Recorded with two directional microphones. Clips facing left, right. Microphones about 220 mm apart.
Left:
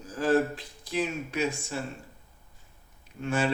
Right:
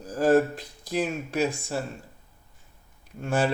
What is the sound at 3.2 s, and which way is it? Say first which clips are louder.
Speech: right 2 dB; 40° right (ahead or behind).